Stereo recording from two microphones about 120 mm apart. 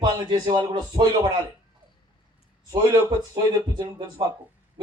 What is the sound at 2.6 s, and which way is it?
A man's voice, 35° right (ahead or behind).